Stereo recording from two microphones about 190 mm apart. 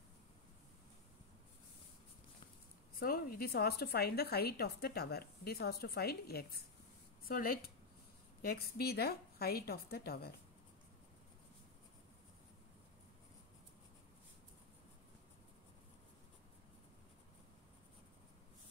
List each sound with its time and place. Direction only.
3.0 s a woman's voice: 50° left (ahead or behind)